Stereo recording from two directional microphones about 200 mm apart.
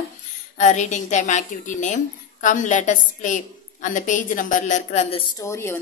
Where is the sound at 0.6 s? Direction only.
35° left (ahead or behind).